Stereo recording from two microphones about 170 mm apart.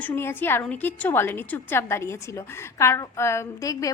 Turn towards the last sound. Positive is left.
turn(degrees=20)  # may be behind; listen again after turning